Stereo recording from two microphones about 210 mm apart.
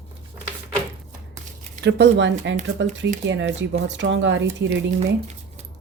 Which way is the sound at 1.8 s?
55° right (ahead or behind).